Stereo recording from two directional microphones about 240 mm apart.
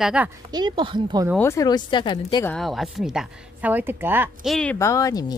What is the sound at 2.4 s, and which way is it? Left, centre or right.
A woman's voice, centre.